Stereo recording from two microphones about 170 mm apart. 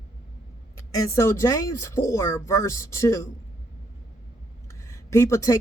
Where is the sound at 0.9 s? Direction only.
20° left (ahead or behind).